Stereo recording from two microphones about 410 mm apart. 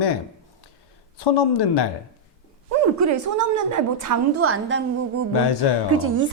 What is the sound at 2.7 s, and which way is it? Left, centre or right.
A woman's voice, right.